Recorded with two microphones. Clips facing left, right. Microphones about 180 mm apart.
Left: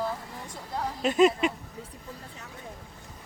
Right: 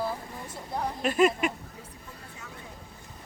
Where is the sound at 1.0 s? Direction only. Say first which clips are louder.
Left 2 dB; 20° left (ahead or behind).